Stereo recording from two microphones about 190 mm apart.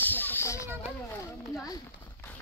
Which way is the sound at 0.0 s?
10° left (ahead or behind).